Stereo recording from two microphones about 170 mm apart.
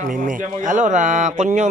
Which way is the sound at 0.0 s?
50° right (ahead or behind).